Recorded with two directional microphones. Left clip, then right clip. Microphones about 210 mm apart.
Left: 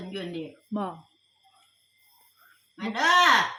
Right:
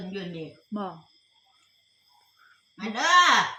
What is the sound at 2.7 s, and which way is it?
Speech, 5° right (ahead or behind).